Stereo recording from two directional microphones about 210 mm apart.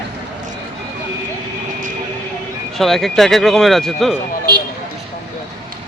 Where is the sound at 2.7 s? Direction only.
Centre (ahead or behind).